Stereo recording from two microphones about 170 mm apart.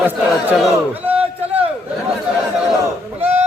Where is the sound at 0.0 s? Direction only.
10° right (ahead or behind).